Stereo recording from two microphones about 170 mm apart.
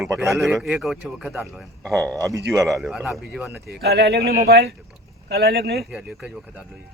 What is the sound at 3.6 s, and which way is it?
Speech, 70° right (ahead or behind).